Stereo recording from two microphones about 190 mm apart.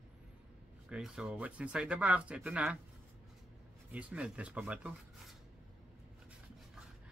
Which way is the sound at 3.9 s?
5° right (ahead or behind).